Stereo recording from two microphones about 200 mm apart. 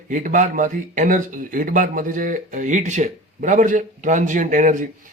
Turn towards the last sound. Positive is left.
turn(degrees=-40)  # may be behind; listen again after turning